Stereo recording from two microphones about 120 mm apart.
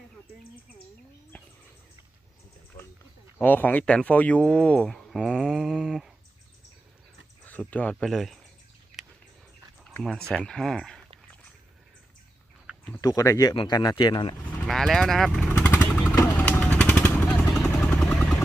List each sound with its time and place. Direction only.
2.8 s a sound: 25° left (ahead or behind)
3.3 s speech: 15° left (ahead or behind)
7.4 s speech: 15° left (ahead or behind)
10.0 s speech: 5° left (ahead or behind)
13.0 s speech: 30° left (ahead or behind)
14.7 s speech: centre (ahead or behind)
15.6 s vehicle: 20° left (ahead or behind)